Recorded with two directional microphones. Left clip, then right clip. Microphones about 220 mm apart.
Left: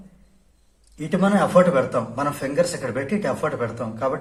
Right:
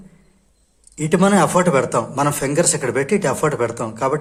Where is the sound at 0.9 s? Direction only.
50° right (ahead or behind).